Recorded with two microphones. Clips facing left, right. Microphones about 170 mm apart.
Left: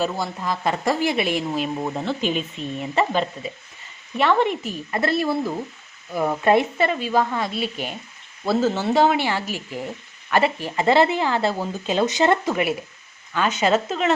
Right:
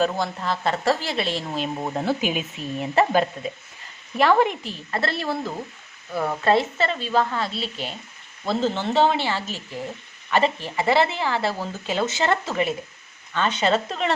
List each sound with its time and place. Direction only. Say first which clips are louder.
0.0 s speech: right 1 dB; 10° left (ahead or behind)
2.0 s speech: right 3 dB; 10° right (ahead or behind)
4.9 s speech: left 4 dB; 15° left (ahead or behind)